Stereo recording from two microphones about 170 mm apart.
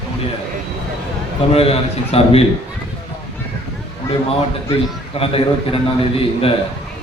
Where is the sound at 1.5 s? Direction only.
35° left (ahead or behind).